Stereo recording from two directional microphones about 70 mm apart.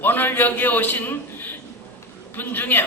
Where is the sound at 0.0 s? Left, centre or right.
Left.